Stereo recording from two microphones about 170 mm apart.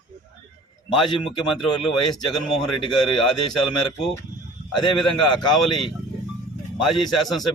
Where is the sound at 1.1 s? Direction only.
30° left (ahead or behind).